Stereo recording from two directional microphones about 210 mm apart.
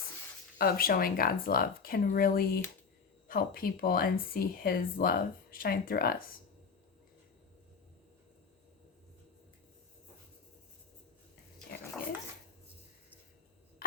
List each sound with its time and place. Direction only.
0.6 s speech: 45° left (ahead or behind)